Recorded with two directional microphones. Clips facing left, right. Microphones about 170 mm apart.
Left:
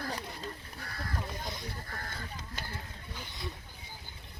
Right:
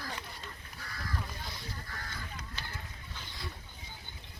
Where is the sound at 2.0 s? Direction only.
50° left (ahead or behind).